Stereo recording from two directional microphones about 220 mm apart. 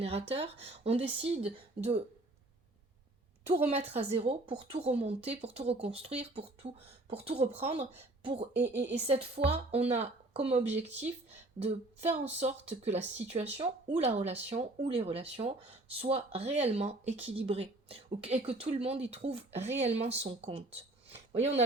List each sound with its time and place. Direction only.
0.0 s speech: 25° right (ahead or behind)
3.4 s a woman's voice: 30° right (ahead or behind)
8.7 s speech: 50° right (ahead or behind)
9.0 s speech: 25° right (ahead or behind)
21.1 s a sound: 30° right (ahead or behind)